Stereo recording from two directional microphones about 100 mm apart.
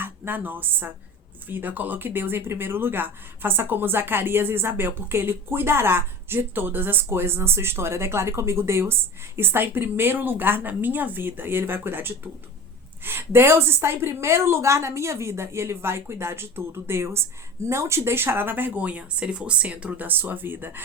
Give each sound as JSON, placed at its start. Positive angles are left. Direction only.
{"t": 0.0, "sound": "speech", "side_deg": -20}